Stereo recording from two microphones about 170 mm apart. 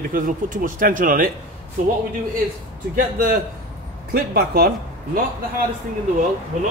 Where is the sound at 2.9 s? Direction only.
55° right (ahead or behind).